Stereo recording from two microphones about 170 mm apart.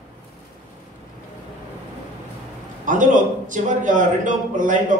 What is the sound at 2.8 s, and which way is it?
A man's voice, 50° right (ahead or behind).